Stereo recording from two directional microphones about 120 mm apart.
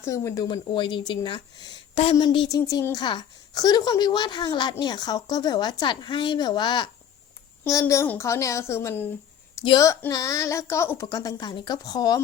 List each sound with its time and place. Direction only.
0.0 s a woman's voice: 25° left (ahead or behind)
0.4 s a woman's voice: 45° left (ahead or behind)
2.5 s a woman's voice: 30° left (ahead or behind)
7.6 s a woman's voice: 25° left (ahead or behind)